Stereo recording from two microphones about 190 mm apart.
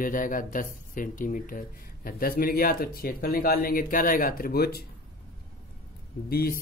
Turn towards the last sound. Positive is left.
turn(degrees=50)  # may be behind; listen again after turning